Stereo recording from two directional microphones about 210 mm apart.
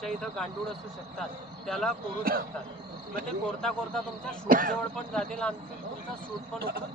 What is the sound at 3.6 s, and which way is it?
Speech, 5° left (ahead or behind).